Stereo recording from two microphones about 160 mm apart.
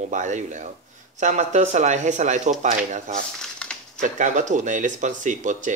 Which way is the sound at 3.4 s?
5° left (ahead or behind).